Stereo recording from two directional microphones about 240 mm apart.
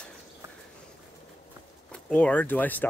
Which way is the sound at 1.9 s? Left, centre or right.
Centre.